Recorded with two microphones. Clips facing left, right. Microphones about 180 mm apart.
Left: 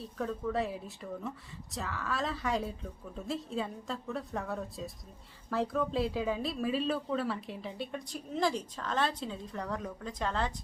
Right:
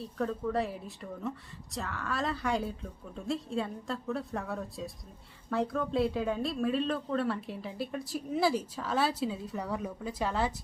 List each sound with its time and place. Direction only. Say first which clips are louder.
0.0 s speech: right 2 dB; centre (ahead or behind)